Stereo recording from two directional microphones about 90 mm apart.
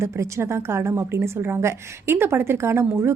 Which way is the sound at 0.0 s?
30° right (ahead or behind).